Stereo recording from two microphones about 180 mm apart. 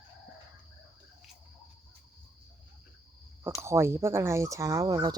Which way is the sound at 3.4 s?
15° right (ahead or behind).